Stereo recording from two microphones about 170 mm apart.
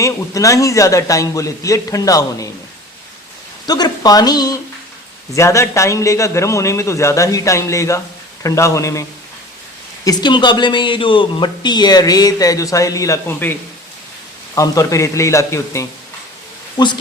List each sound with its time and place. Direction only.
0.0 s speech: 20° left (ahead or behind)
3.7 s a man's voice: 25° left (ahead or behind)